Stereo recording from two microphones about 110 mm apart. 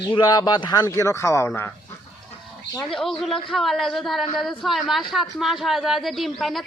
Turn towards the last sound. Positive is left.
turn(degrees=0)  # may be behind; listen again after turning